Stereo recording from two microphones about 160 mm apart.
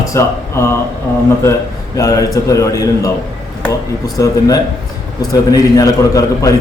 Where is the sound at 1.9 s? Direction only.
20° left (ahead or behind).